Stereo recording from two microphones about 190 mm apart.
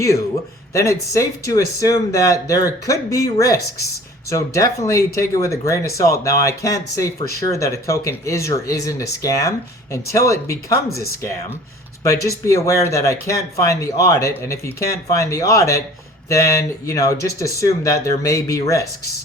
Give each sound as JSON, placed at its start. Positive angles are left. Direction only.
{"t": 0.7, "sound": "speech", "side_deg": 15}
{"t": 12.0, "sound": "speech", "side_deg": 15}